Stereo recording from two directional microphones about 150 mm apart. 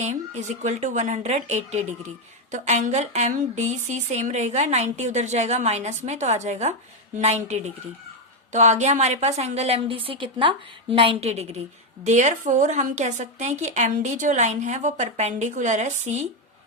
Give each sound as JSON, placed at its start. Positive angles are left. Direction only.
{"t": 0.0, "sound": "a woman's voice", "side_deg": -50}